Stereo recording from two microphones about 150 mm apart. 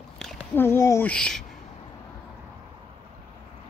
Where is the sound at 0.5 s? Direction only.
15° left (ahead or behind).